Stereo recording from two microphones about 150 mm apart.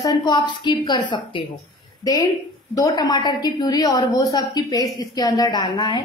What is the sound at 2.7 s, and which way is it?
A woman's voice, 25° left (ahead or behind).